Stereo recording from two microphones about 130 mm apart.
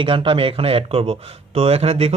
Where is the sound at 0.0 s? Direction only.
40° right (ahead or behind).